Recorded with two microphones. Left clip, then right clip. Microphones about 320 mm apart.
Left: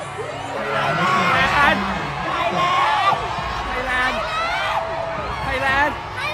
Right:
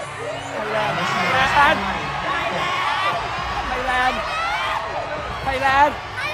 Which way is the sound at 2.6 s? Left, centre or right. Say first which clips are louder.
Left 4 dB; centre.